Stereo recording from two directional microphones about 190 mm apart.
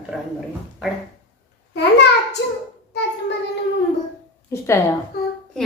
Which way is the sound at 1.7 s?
60° left (ahead or behind).